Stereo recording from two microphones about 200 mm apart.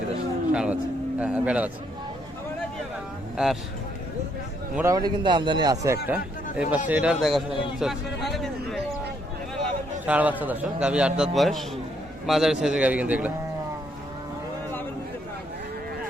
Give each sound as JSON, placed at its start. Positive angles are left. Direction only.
{"t": 0.5, "sound": "a man's voice", "side_deg": -5}
{"t": 3.3, "sound": "a man's voice", "side_deg": 0}
{"t": 4.7, "sound": "a man's voice", "side_deg": -15}
{"t": 10.1, "sound": "a man's voice", "side_deg": -10}